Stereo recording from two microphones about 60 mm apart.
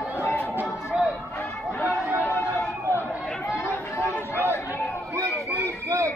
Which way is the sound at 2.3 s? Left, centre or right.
Left.